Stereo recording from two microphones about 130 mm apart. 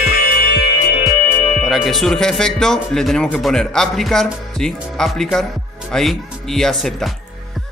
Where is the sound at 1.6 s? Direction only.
Centre (ahead or behind).